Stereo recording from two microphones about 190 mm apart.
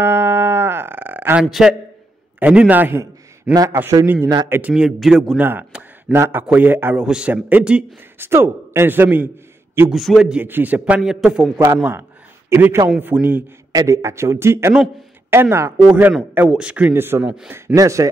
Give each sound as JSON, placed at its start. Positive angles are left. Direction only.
{"t": 0.0, "sound": "a sound", "side_deg": -15}
{"t": 2.4, "sound": "a man's voice", "side_deg": -5}
{"t": 4.6, "sound": "a man's voice", "side_deg": -5}
{"t": 17.7, "sound": "a man's voice", "side_deg": -15}